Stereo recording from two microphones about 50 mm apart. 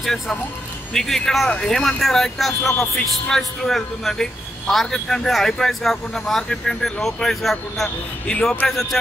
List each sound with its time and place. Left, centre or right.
0.9 s speech: centre
8.3 s speech: centre